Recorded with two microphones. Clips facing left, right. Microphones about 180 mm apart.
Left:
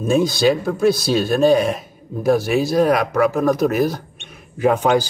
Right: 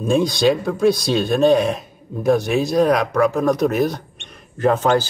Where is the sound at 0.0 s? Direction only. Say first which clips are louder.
Even; centre (ahead or behind).